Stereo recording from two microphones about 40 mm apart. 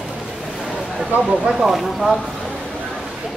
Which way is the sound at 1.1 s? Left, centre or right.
Right.